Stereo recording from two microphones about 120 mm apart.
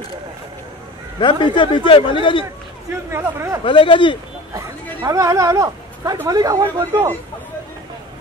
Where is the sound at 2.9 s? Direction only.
20° right (ahead or behind).